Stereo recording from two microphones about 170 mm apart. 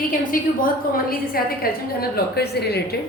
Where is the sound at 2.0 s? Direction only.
70° left (ahead or behind).